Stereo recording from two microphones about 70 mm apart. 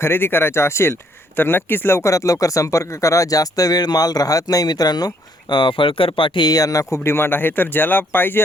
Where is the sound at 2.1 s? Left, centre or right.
Left.